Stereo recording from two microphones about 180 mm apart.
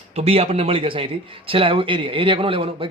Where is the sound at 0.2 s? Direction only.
35° right (ahead or behind).